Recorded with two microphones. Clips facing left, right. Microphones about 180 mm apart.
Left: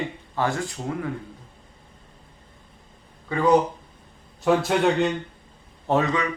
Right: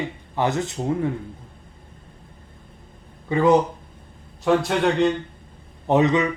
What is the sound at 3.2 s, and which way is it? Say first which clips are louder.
Speech: right 4 dB; 20° right (ahead or behind).